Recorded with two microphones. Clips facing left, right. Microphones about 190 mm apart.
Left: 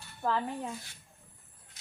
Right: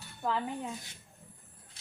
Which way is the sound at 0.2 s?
5° right (ahead or behind).